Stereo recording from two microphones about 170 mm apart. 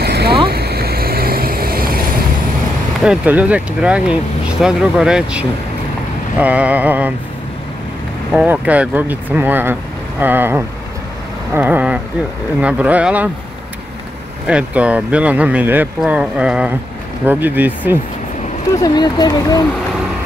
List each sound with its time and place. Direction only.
0.0 s a sound: 70° right (ahead or behind)
0.5 s vehicle: 65° right (ahead or behind)
3.0 s speech: 5° right (ahead or behind)
8.3 s speech: 5° right (ahead or behind)
14.5 s speech: 10° right (ahead or behind)
18.8 s speech: 25° left (ahead or behind)